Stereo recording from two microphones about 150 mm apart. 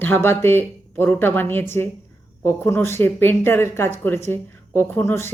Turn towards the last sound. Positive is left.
turn(degrees=15)  # may be behind; listen again after turning